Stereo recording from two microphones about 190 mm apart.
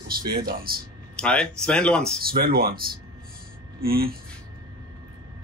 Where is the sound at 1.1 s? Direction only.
5° left (ahead or behind).